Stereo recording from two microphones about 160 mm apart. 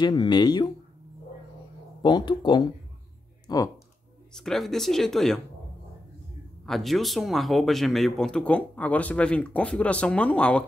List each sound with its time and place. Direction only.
0.0 s speech: 25° left (ahead or behind)
2.0 s speech: 30° left (ahead or behind)
4.3 s speech: 5° left (ahead or behind)
6.6 s speech: centre (ahead or behind)